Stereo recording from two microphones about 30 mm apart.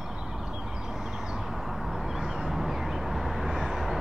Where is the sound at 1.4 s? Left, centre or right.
Centre.